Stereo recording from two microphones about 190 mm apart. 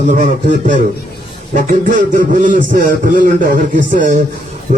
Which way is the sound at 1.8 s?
40° right (ahead or behind).